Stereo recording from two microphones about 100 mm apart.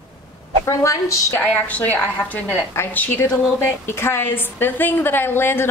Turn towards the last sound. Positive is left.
turn(degrees=20)  # may be behind; listen again after turning